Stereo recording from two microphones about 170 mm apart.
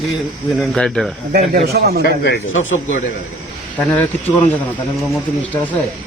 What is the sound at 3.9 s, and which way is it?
Speech, 10° left (ahead or behind).